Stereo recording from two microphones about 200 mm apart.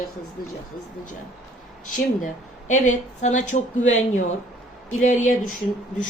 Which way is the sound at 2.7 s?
40° left (ahead or behind).